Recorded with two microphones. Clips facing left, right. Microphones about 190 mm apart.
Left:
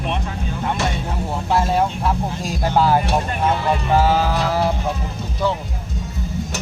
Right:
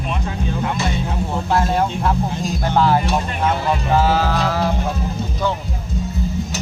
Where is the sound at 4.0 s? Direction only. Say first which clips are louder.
Even; 15° left (ahead or behind).